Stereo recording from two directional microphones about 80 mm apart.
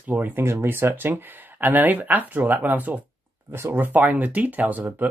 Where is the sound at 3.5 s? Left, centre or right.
Right.